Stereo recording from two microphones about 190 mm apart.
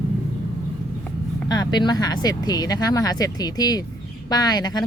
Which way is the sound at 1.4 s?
20° left (ahead or behind).